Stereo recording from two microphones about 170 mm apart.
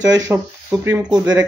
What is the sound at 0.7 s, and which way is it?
Speech, 20° right (ahead or behind).